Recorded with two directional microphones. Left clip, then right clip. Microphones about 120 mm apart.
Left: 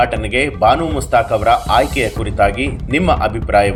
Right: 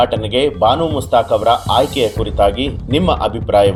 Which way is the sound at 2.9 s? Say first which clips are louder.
Left 1 dB; 40° right (ahead or behind).